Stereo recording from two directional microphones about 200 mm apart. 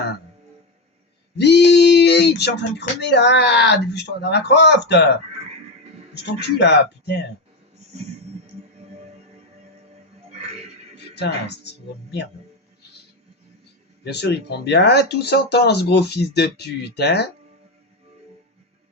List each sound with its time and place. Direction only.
1.4 s child singing: 60° left (ahead or behind)
6.4 s child singing: 60° left (ahead or behind)
11.1 s speech: 60° left (ahead or behind)
14.0 s child singing: 55° left (ahead or behind)